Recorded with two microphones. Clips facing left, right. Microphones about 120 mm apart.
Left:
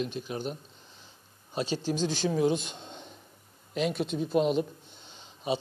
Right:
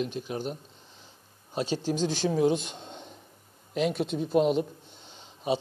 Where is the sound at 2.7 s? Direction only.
20° right (ahead or behind).